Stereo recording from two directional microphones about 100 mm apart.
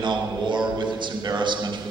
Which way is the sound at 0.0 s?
50° right (ahead or behind).